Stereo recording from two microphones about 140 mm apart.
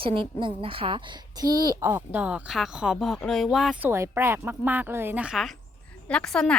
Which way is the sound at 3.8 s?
20° right (ahead or behind).